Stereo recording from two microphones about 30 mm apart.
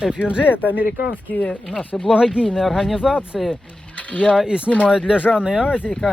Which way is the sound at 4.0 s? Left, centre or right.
Left.